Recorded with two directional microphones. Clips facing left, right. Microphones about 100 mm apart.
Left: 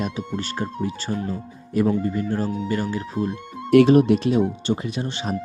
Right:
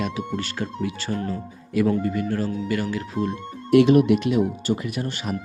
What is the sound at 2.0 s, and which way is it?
Speech, 30° left (ahead or behind).